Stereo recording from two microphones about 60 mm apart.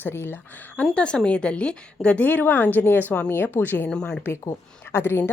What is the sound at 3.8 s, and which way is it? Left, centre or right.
Speech, centre.